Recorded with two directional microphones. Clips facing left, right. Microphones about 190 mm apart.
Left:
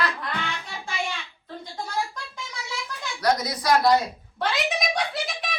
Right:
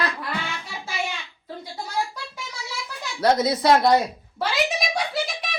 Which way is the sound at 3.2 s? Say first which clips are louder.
Right 5 dB; 25° right (ahead or behind).